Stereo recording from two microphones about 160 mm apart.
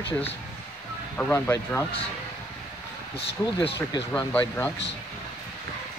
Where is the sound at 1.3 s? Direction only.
15° left (ahead or behind).